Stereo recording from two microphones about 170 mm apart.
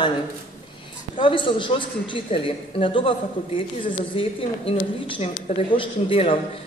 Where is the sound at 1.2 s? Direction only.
30° left (ahead or behind).